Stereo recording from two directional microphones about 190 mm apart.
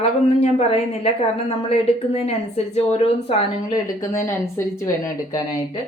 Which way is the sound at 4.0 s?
15° left (ahead or behind).